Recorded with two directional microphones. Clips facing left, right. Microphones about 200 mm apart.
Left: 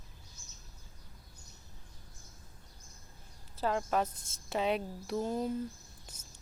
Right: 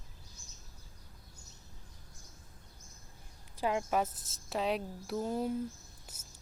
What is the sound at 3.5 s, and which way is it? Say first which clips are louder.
A woman's voice: even; 10° right (ahead or behind).